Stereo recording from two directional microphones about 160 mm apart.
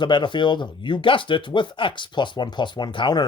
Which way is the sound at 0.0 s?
30° left (ahead or behind).